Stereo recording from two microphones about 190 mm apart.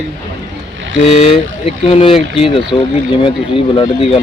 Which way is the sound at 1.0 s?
30° left (ahead or behind).